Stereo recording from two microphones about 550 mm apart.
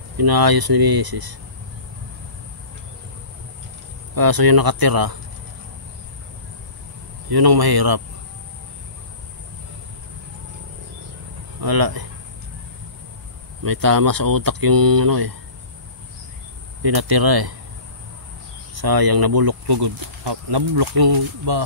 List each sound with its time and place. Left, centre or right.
0.2 s speech: right
4.1 s speech: right
7.2 s speech: right
11.6 s speech: right
13.6 s speech: right
16.8 s speech: right
18.8 s speech: right